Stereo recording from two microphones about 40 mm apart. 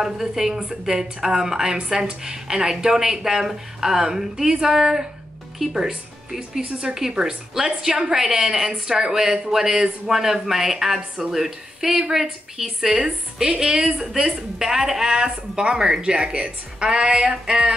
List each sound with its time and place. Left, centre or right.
0.0 s a woman's voice: centre
14.2 s a woman's voice: centre